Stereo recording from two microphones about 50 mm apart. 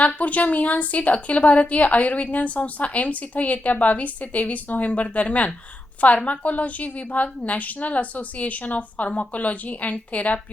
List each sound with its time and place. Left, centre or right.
0.0 s a woman's voice: left